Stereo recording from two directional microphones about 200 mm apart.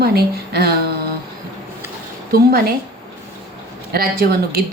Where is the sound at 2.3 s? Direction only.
50° right (ahead or behind).